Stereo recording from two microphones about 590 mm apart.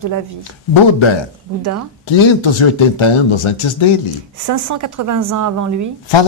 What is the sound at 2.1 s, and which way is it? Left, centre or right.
Speech, left.